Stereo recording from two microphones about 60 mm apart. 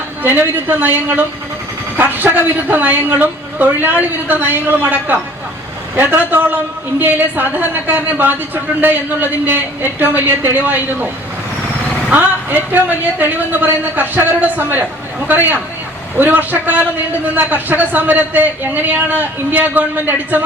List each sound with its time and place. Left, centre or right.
0.2 s a man's voice: right
12.1 s a man's voice: right